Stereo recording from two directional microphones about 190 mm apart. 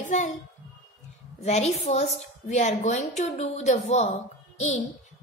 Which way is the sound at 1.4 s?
35° left (ahead or behind).